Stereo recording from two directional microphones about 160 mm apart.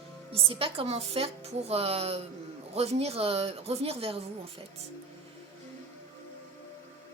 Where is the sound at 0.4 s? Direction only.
35° right (ahead or behind).